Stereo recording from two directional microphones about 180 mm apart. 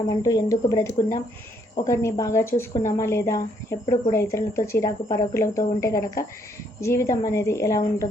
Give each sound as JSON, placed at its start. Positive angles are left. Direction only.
{"t": 0.2, "sound": "a woman's voice", "side_deg": 20}